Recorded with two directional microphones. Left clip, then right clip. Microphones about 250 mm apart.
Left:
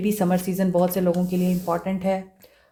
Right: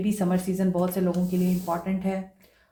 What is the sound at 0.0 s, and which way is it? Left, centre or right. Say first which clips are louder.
Speech: left 4 dB; left.